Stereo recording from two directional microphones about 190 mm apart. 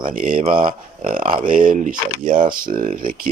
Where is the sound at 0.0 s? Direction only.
45° right (ahead or behind).